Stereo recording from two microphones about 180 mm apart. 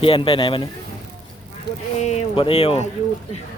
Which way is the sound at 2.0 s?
40° left (ahead or behind).